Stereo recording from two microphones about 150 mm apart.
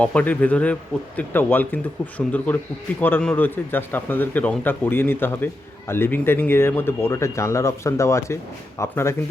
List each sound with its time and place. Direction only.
0.0 s speech: 10° left (ahead or behind)